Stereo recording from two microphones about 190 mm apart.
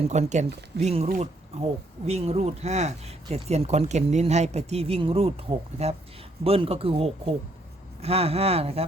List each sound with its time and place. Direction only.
0.0 s speech: 35° right (ahead or behind)